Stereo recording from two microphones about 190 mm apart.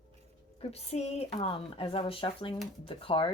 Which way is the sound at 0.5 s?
35° left (ahead or behind).